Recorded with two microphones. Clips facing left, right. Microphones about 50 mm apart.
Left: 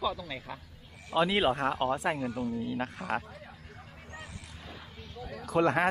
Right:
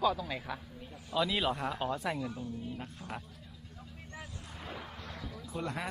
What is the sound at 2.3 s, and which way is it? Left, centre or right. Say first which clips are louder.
Speech: left 7 dB; left.